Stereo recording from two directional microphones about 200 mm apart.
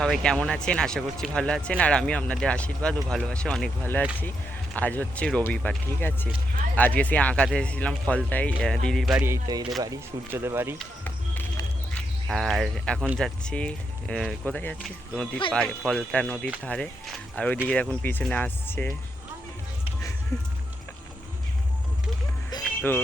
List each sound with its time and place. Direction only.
0.0 s speech: 5° left (ahead or behind); by 10.8 s 10° right (ahead or behind)
10.8 s music: 10° left (ahead or behind)
13.1 s speech: 5° left (ahead or behind)
22.4 s music: 15° left (ahead or behind)